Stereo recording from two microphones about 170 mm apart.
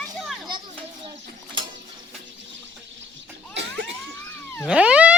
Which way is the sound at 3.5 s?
90° right.